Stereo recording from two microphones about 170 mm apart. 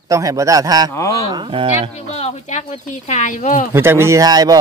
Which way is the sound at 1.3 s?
30° right (ahead or behind).